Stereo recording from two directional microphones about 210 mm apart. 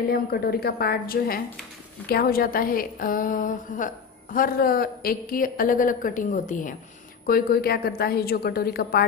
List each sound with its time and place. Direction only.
0.1 s a woman's voice: 45° left (ahead or behind)